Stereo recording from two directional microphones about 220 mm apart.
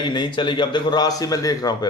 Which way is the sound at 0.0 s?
20° left (ahead or behind).